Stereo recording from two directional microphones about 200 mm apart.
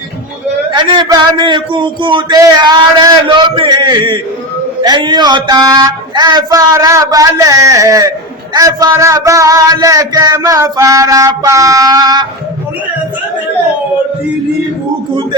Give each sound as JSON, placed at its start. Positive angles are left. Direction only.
{"t": 0.7, "sound": "a man's voice", "side_deg": -25}